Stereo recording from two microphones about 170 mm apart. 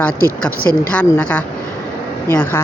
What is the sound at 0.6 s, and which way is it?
Speech, 60° left (ahead or behind).